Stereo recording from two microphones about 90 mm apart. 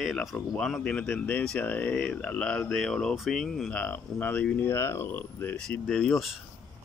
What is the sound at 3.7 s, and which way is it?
Speech, 15° left (ahead or behind).